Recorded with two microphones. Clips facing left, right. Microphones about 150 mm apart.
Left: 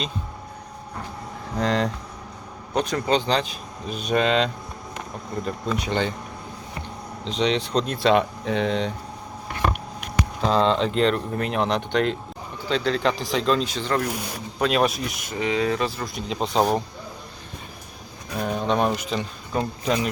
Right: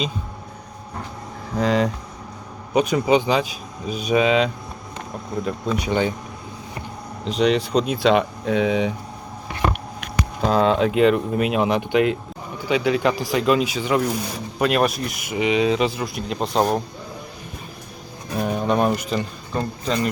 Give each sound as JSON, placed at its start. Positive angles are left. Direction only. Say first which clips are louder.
{"t": 1.5, "sound": "speech", "louder": "right 3 dB", "side_deg": -5}
{"t": 5.7, "sound": "speech", "louder": "right 4 dB", "side_deg": -5}
{"t": 7.3, "sound": "speech", "louder": "right 4 dB", "side_deg": -5}
{"t": 10.4, "sound": "speech", "louder": "right 3 dB", "side_deg": -5}
{"t": 15.3, "sound": "speech", "louder": "right 4 dB", "side_deg": -15}
{"t": 16.0, "sound": "speech", "louder": "right 2 dB", "side_deg": -5}
{"t": 18.3, "sound": "speech", "louder": "right 2 dB", "side_deg": -5}